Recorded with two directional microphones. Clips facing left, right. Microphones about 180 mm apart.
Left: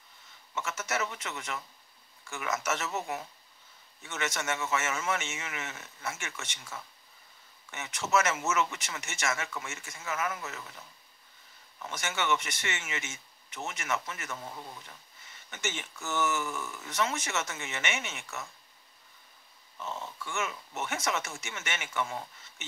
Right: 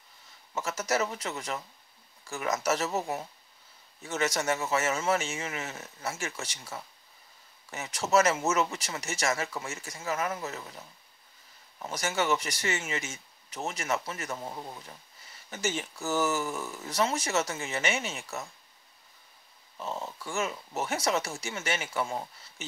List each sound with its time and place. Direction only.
0.6 s speech: 35° right (ahead or behind)
11.8 s speech: 35° right (ahead or behind)
19.8 s speech: 35° right (ahead or behind)